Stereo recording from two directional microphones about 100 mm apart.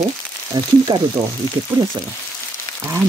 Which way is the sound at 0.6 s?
45° right (ahead or behind).